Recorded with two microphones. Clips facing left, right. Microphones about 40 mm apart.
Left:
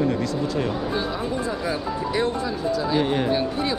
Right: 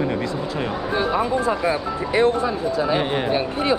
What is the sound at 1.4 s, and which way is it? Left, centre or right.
Speech, right.